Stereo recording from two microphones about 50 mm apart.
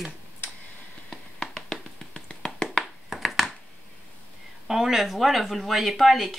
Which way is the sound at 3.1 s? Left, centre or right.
Centre.